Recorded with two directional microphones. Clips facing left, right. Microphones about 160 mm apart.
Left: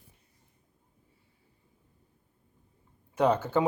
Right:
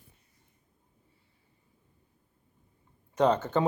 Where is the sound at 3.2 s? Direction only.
10° left (ahead or behind).